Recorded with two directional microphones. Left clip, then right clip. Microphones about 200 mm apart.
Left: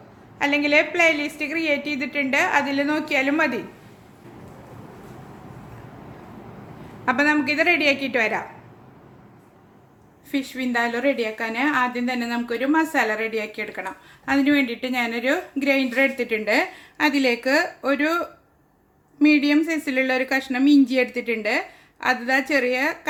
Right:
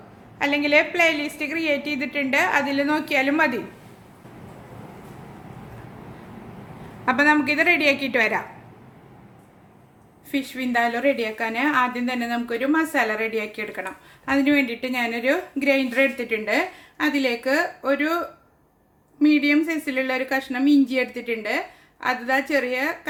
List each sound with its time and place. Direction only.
0.3 s a woman's voice: 10° left (ahead or behind)
7.0 s a woman's voice: 5° left (ahead or behind)
10.3 s a woman's voice: centre (ahead or behind); by 18.2 s 20° left (ahead or behind)
19.2 s speech: 20° left (ahead or behind)